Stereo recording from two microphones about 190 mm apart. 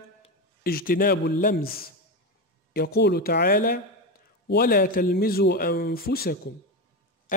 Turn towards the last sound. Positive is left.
turn(degrees=55)  # may be behind; listen again after turning